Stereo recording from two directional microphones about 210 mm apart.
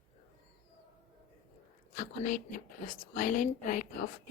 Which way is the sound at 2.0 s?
40° left (ahead or behind).